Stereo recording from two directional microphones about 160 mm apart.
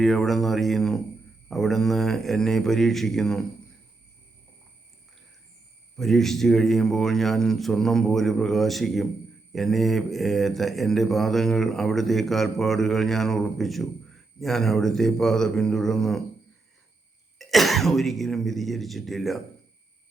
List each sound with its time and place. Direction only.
0.0 s mantra: centre (ahead or behind)
6.0 s mantra: centre (ahead or behind)
17.3 s mantra: centre (ahead or behind)